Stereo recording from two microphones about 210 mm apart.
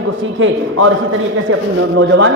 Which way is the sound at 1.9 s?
70° right (ahead or behind).